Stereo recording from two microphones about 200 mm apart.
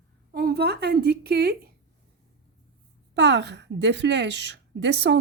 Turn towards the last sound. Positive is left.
turn(degrees=-60)  # may be behind; listen again after turning